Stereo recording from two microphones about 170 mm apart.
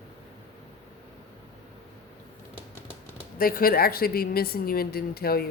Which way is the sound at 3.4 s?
60° left (ahead or behind).